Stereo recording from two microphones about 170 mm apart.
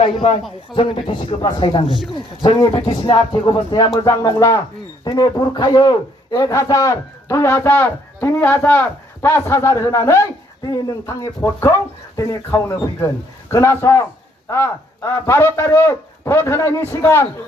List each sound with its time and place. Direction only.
0.0 s a man's voice: 30° left (ahead or behind); by 17.2 s 15° left (ahead or behind)